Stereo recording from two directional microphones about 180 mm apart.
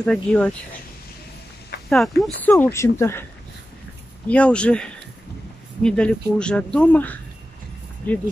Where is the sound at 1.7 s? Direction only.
60° left (ahead or behind).